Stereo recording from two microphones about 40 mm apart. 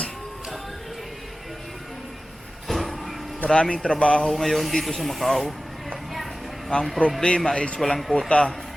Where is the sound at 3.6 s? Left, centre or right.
Left.